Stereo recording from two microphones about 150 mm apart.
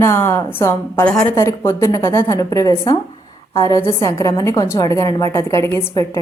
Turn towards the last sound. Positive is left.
turn(degrees=20)  # may be behind; listen again after turning